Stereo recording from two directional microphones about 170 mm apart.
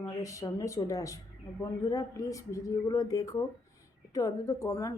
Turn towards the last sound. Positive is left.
turn(degrees=20)  # may be behind; listen again after turning